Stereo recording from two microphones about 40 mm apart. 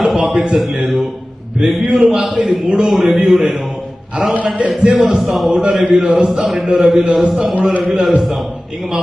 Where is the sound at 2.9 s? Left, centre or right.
Centre.